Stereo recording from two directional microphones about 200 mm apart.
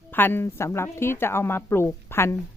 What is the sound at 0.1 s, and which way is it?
A woman's voice, 10° left (ahead or behind).